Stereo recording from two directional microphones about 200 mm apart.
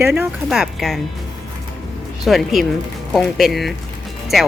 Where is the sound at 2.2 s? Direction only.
Centre (ahead or behind).